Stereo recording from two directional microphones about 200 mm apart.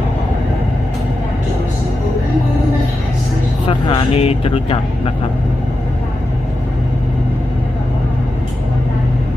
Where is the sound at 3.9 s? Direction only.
30° left (ahead or behind).